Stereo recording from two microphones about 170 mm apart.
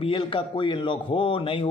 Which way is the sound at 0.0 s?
30° left (ahead or behind).